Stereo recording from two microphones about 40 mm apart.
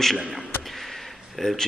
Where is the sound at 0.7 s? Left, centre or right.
Centre.